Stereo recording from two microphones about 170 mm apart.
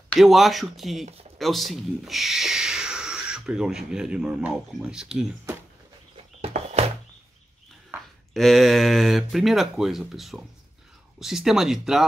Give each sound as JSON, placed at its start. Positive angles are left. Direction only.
{"t": 0.1, "sound": "speech", "side_deg": 0}
{"t": 6.4, "sound": "a sound", "side_deg": -40}
{"t": 8.3, "sound": "speech", "side_deg": 0}